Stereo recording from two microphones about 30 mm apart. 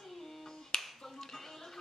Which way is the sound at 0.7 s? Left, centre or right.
Left.